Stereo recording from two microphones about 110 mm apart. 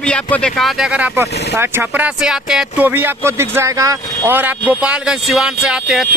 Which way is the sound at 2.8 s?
20° right (ahead or behind).